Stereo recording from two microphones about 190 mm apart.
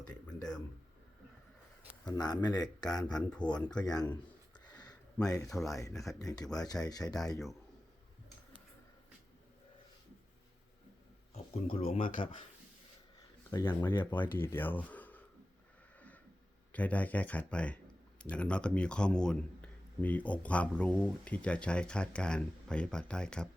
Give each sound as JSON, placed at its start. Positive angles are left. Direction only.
{"t": 0.3, "sound": "a man's voice", "side_deg": 5}
{"t": 2.0, "sound": "speech", "side_deg": 20}
{"t": 3.2, "sound": "speech", "side_deg": 5}
{"t": 3.9, "sound": "speech", "side_deg": 20}
{"t": 4.6, "sound": "a sound", "side_deg": 20}
{"t": 5.2, "sound": "speech", "side_deg": 20}
{"t": 11.9, "sound": "speech", "side_deg": 45}
{"t": 12.1, "sound": "speech", "side_deg": 25}
{"t": 13.5, "sound": "speech", "side_deg": 15}
{"t": 16.0, "sound": "a sound", "side_deg": 10}
{"t": 16.7, "sound": "speech", "side_deg": 10}